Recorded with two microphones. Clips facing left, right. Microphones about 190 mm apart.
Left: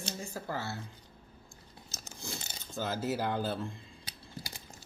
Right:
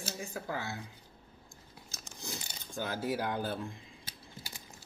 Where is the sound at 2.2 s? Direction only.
15° right (ahead or behind).